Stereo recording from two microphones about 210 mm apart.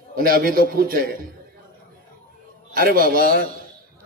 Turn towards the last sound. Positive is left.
turn(degrees=-45)  # may be behind; listen again after turning